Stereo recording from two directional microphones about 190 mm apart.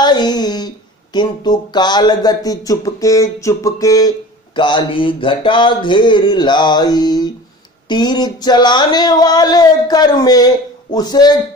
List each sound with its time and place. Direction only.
0.0 s speech: 20° left (ahead or behind)